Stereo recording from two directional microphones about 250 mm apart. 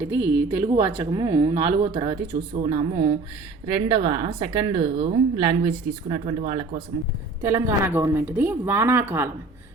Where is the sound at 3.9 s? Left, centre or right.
Right.